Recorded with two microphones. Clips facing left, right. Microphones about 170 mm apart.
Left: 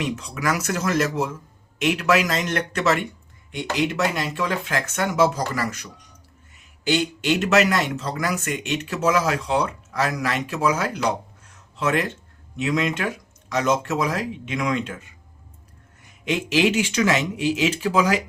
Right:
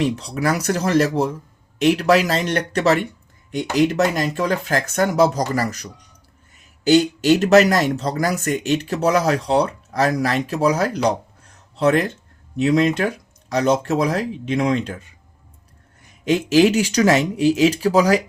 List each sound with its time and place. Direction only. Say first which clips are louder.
0.0 s speech: right 5 dB; 35° right (ahead or behind)
11.4 s a sound: right 7 dB; 35° right (ahead or behind)
12.5 s speech: right 6 dB; 35° right (ahead or behind)
16.2 s speech: right 6 dB; 40° right (ahead or behind)